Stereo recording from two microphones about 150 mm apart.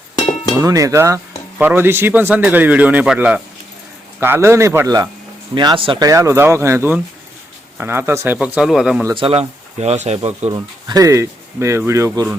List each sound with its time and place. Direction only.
0.6 s speech: 20° right (ahead or behind)
5.5 s speech: 35° right (ahead or behind)
6.1 s speech: 20° right (ahead or behind); by 9.0 s 5° right (ahead or behind)
9.1 s speech: 40° right (ahead or behind)
10.5 s speech: 25° right (ahead or behind)